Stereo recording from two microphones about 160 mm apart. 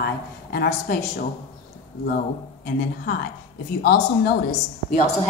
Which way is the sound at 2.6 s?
60° left (ahead or behind).